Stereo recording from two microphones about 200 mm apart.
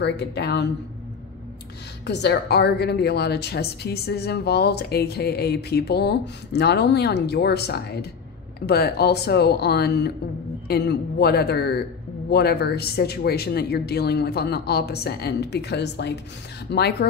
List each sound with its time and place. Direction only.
0.0 s a woman's voice: 55° left (ahead or behind)
2.0 s a woman's voice: 55° left (ahead or behind)